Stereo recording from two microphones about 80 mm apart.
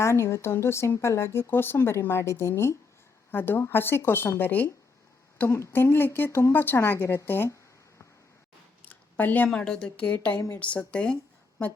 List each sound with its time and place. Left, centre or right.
0.0 s a woman's voice: left
8.8 s a sound: left
9.6 s a woman's voice: centre